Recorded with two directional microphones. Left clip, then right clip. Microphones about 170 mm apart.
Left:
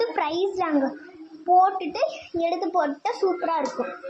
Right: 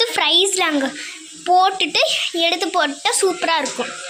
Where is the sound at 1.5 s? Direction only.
25° right (ahead or behind).